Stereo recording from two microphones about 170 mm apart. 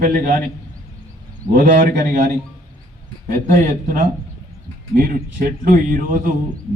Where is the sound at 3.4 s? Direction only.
50° right (ahead or behind).